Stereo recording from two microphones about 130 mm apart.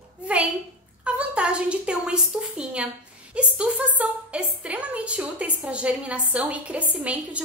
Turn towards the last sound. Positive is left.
turn(degrees=-10)  # may be behind; listen again after turning